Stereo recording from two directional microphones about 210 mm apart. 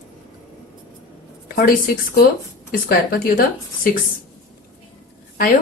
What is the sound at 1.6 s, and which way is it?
Speech, 45° left (ahead or behind).